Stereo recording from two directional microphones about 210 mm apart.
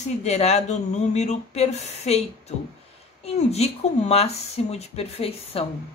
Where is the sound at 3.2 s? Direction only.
30° left (ahead or behind).